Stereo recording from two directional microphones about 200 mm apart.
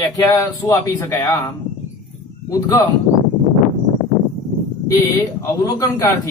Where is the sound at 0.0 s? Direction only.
15° left (ahead or behind).